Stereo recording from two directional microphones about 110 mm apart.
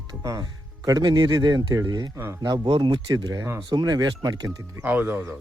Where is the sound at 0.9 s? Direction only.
40° right (ahead or behind).